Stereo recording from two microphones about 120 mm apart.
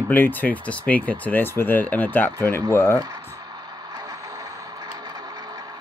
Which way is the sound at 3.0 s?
35° right (ahead or behind).